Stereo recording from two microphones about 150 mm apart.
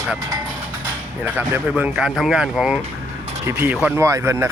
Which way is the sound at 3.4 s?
15° right (ahead or behind).